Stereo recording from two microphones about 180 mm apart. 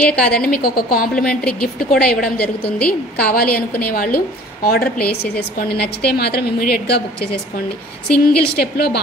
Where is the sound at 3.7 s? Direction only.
50° left (ahead or behind).